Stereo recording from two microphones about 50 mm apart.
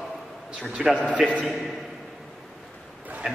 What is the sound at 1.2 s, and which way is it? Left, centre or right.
Speech, right.